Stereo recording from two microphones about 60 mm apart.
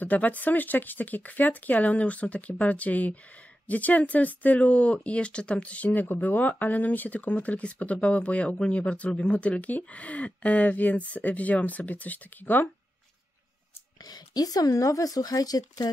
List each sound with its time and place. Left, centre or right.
0.0 s speech: left
14.0 s speech: left